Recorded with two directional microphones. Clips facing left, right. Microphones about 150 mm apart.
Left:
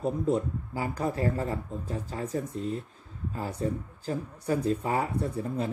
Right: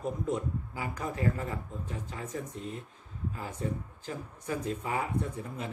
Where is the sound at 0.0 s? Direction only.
30° left (ahead or behind).